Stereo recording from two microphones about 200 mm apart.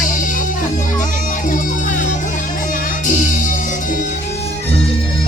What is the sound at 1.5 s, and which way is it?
Music, 40° left (ahead or behind).